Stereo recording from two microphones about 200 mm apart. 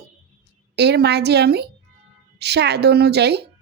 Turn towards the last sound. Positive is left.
turn(degrees=-55)  # may be behind; listen again after turning